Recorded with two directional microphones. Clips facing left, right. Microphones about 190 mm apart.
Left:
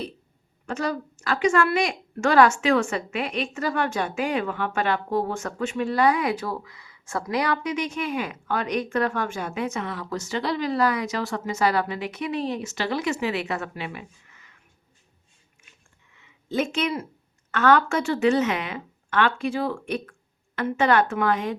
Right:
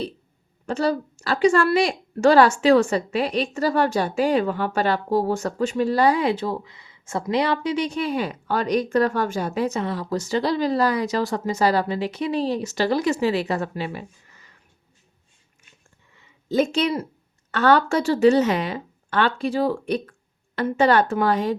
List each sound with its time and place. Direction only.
0.7 s a woman's voice: 30° right (ahead or behind)
16.1 s a sound: 35° right (ahead or behind)
17.5 s a woman's voice: 35° right (ahead or behind)